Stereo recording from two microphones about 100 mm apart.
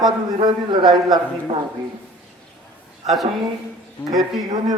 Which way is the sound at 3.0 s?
Centre (ahead or behind).